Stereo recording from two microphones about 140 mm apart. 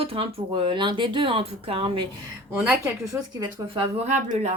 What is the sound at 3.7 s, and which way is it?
Speech, 50° right (ahead or behind).